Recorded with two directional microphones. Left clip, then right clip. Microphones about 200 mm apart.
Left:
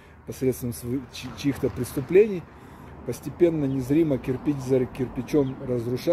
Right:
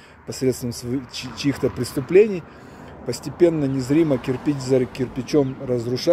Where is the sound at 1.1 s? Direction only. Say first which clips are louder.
Right 6 dB; 25° left (ahead or behind).